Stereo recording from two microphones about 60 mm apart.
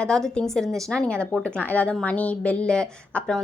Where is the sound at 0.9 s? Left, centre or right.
Centre.